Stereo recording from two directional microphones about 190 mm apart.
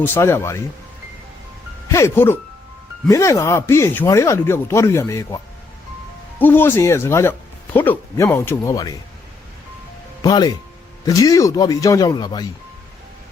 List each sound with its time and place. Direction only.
0.0 s speech: 10° left (ahead or behind)
1.9 s speech: 15° left (ahead or behind)
6.4 s speech: 10° left (ahead or behind)
10.2 s speech: 20° left (ahead or behind)